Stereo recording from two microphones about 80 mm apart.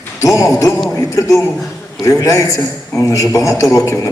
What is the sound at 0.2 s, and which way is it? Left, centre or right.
A man's voice, left.